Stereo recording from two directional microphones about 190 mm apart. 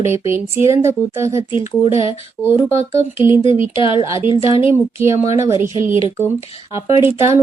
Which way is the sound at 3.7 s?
25° left (ahead or behind).